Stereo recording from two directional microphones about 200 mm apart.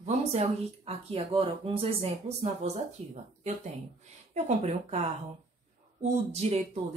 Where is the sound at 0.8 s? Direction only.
30° right (ahead or behind).